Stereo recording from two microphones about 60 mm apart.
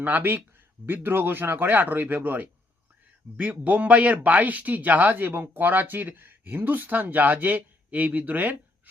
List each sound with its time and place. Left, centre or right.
0.0 s speech: right
3.6 s speech: right